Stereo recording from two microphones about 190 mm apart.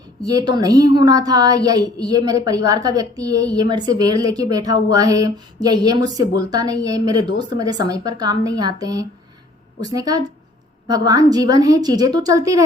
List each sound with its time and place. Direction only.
0.2 s a woman's voice: 20° right (ahead or behind)